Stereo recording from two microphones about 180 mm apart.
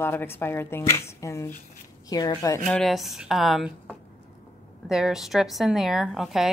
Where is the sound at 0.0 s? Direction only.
10° left (ahead or behind).